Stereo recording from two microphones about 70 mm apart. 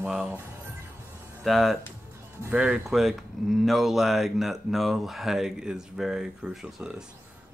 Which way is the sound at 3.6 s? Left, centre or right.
Centre.